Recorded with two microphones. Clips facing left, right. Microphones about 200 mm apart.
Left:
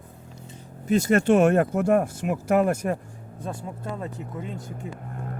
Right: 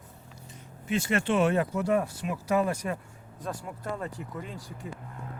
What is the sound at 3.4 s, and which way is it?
Speech, 25° left (ahead or behind).